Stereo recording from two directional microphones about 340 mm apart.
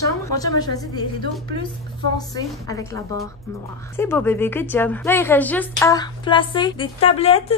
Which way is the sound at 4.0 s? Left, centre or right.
Centre.